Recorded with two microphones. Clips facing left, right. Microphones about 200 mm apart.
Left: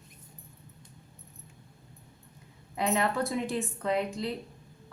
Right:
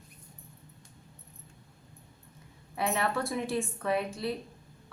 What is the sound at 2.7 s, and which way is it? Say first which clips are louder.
A woman's voice: left 2 dB; 15° left (ahead or behind).